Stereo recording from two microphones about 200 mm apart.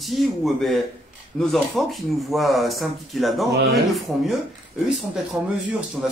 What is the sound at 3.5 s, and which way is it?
Speech, 60° right (ahead or behind).